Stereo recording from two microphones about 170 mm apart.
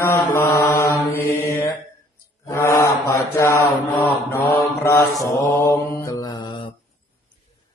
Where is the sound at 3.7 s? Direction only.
Centre (ahead or behind).